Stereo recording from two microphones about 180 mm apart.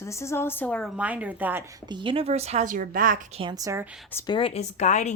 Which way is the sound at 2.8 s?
50° right (ahead or behind).